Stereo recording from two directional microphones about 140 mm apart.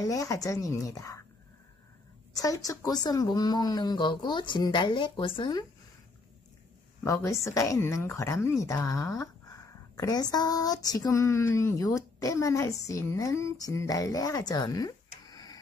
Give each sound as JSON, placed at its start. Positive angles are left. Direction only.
{"t": 0.0, "sound": "speech", "side_deg": 25}
{"t": 2.3, "sound": "speech", "side_deg": 25}
{"t": 7.1, "sound": "speech", "side_deg": 20}